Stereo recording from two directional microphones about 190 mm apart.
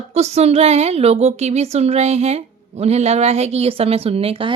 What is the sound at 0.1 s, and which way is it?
Speech, 35° right (ahead or behind).